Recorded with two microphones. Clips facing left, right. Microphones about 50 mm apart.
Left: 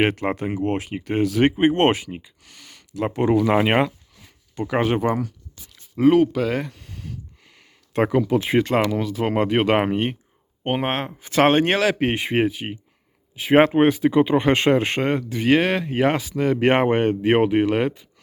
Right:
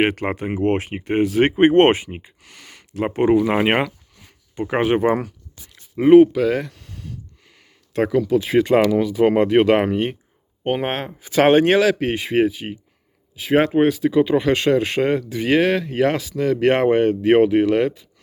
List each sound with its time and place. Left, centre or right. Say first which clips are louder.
0.3 s speech: even; centre
0.6 s speech: right 4 dB; right
2.5 s a sound: right 3 dB; right
3.2 s speech: right 2 dB; right
5.7 s a sound: right 6 dB; centre
6.3 s speech: right 3 dB; centre
7.4 s a sound: even; centre
8.0 s speech: right 2 dB; centre
8.9 s speech: right 6 dB; centre
11.9 s speech: right 2 dB; centre